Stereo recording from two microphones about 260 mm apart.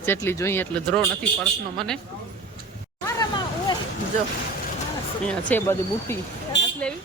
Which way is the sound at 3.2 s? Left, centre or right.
Centre.